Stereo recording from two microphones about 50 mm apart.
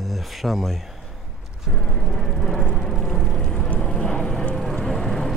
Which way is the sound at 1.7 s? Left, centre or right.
Centre.